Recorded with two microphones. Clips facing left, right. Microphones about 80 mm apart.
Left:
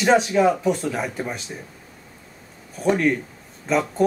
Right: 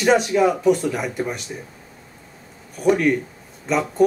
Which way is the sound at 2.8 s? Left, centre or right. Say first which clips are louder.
Right 2 dB; centre.